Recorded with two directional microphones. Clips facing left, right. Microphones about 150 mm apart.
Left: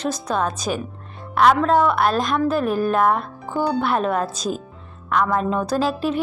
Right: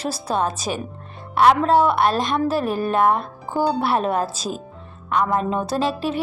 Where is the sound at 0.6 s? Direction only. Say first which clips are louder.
Left 1 dB; centre (ahead or behind).